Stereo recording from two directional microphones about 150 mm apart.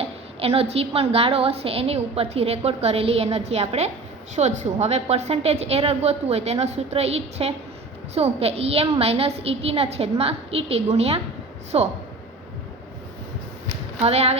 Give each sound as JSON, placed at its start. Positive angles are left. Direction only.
{"t": 0.0, "sound": "a woman's voice", "side_deg": -40}
{"t": 14.0, "sound": "a woman's voice", "side_deg": -45}